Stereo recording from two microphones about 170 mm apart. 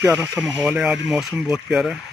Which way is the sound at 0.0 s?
15° right (ahead or behind).